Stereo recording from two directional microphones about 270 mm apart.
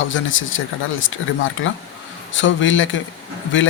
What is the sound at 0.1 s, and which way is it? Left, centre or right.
Speech, left.